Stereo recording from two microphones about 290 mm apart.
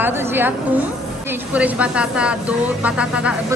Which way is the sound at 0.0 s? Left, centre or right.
Centre.